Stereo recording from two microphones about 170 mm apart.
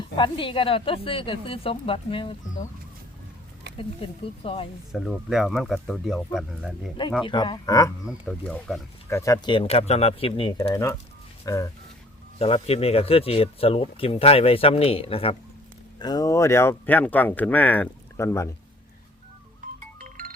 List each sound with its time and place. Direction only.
0.2 s speech: 30° left (ahead or behind)
3.8 s speech: 35° left (ahead or behind)
4.9 s speech: centre (ahead or behind)
7.3 s speech: 25° left (ahead or behind)
8.0 s speech: 5° left (ahead or behind)
9.0 s speech: 15° left (ahead or behind)
10.6 s speech: 15° left (ahead or behind)
12.4 s speech: 35° left (ahead or behind); by 18.4 s 15° left (ahead or behind)
20.0 s music: 50° right (ahead or behind)